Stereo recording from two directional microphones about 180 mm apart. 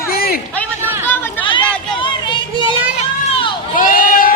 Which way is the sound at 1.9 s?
25° left (ahead or behind).